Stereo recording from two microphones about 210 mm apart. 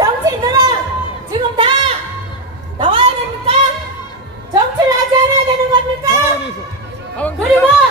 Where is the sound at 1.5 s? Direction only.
25° right (ahead or behind).